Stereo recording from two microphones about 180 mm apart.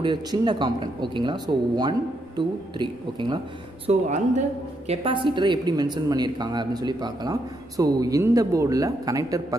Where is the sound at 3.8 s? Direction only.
40° right (ahead or behind).